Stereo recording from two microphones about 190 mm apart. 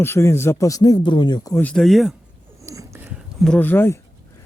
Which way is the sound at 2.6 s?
15° right (ahead or behind).